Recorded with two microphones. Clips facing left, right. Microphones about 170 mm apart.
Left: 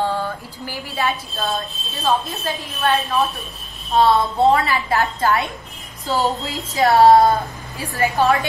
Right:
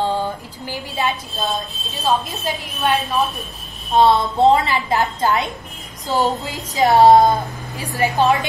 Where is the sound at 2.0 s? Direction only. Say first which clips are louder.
Even; 15° right (ahead or behind).